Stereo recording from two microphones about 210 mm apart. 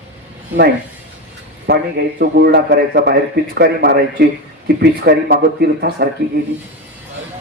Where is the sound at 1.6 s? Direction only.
50° right (ahead or behind).